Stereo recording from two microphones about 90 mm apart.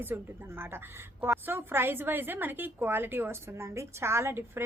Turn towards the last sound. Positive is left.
turn(degrees=-30)  # may be behind; listen again after turning